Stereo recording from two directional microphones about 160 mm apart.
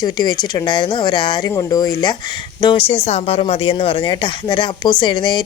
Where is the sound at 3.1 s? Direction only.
40° left (ahead or behind).